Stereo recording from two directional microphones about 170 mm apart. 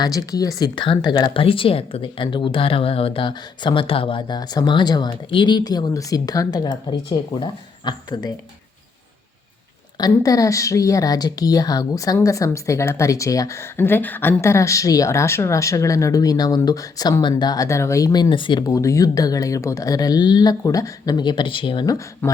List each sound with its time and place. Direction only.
0.0 s a woman's voice: 20° left (ahead or behind)
10.0 s a woman's voice: 20° left (ahead or behind)